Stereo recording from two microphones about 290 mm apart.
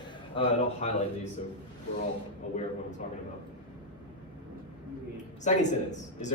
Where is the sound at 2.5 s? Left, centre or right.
Left.